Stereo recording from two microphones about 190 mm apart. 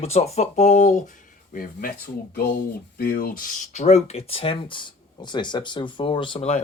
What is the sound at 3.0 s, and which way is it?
Speech, 55° left (ahead or behind).